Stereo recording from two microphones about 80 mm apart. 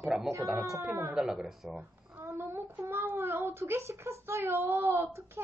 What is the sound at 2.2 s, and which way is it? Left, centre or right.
Speech, right.